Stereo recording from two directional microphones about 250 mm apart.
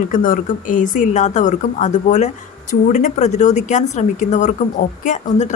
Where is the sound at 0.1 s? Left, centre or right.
Left.